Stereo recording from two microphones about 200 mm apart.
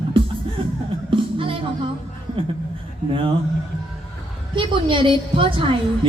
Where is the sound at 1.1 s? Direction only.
25° right (ahead or behind).